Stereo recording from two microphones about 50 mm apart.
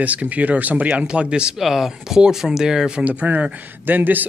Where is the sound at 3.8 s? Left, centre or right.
Right.